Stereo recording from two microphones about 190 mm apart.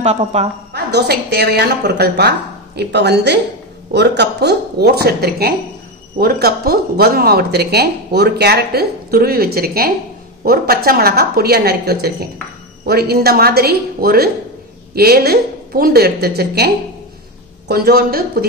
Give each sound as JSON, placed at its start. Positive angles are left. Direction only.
{"t": 0.0, "sound": "a woman's voice", "side_deg": -35}
{"t": 0.7, "sound": "speech", "side_deg": -60}